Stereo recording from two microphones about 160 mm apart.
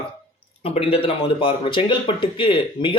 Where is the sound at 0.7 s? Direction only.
35° left (ahead or behind).